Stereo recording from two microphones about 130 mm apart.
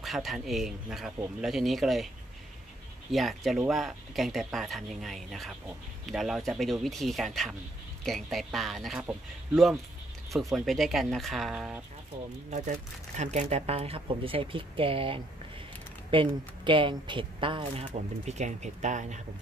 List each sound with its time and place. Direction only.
0.0 s speech: centre (ahead or behind)
3.1 s speech: centre (ahead or behind)
10.5 s speech: centre (ahead or behind)
12.4 s a woman's voice: 65° right (ahead or behind); by 17.8 s 40° right (ahead or behind)
17.8 s speech: 60° right (ahead or behind)